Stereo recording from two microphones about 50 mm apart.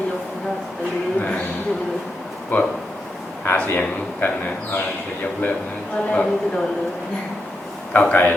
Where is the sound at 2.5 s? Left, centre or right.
Left.